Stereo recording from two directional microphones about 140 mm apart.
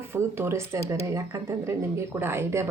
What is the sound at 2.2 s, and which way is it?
Speech, 15° right (ahead or behind).